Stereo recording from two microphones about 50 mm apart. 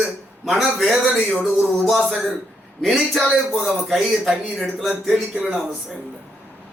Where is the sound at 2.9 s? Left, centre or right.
Centre.